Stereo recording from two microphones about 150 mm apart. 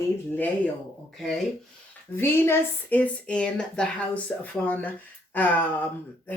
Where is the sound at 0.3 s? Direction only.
10° left (ahead or behind).